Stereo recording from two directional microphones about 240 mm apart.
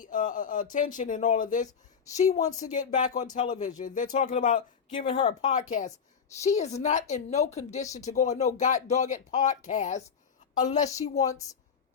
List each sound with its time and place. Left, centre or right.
0.0 s a woman's voice: left
4.9 s a woman's voice: left
11.3 s a woman's voice: centre